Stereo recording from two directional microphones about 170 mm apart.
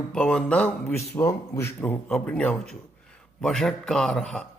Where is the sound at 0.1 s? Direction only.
5° left (ahead or behind).